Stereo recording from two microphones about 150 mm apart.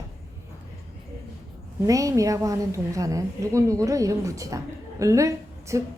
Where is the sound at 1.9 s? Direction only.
20° right (ahead or behind).